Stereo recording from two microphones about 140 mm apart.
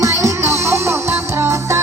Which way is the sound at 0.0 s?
20° right (ahead or behind).